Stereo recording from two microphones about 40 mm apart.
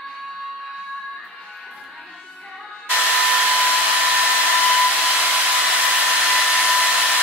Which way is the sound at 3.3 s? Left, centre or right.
Right.